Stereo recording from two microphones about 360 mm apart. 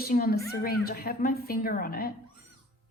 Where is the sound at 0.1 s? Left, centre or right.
Left.